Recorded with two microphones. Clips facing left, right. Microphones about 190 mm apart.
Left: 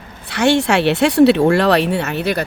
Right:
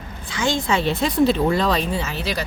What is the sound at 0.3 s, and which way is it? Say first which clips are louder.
Speech: left 7 dB; 70° left (ahead or behind).